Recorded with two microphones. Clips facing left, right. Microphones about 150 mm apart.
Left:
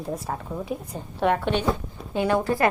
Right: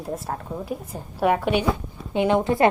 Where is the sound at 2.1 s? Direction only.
20° right (ahead or behind).